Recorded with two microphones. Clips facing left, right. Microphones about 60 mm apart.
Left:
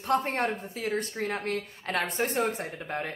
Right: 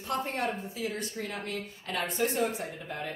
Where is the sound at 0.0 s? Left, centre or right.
Left.